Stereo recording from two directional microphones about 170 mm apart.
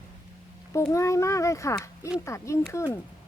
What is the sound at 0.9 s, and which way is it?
A child's voice, 20° left (ahead or behind).